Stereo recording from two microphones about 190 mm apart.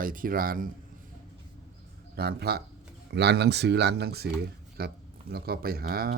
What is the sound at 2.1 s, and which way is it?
A man's voice, 55° right (ahead or behind).